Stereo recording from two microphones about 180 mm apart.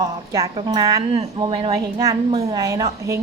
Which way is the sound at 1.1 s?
35° right (ahead or behind).